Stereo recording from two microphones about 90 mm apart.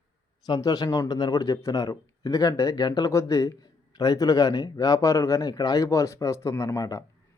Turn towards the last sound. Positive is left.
turn(degrees=40)  # may be behind; listen again after turning